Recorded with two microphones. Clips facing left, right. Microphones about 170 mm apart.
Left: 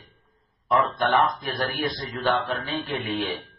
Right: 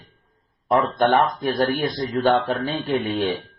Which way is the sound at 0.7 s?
35° right (ahead or behind).